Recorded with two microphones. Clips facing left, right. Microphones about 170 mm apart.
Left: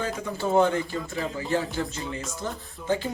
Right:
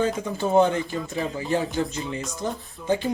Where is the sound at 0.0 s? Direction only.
20° right (ahead or behind).